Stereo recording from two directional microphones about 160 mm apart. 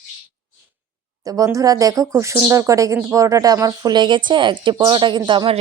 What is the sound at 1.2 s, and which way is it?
Speech, 20° right (ahead or behind).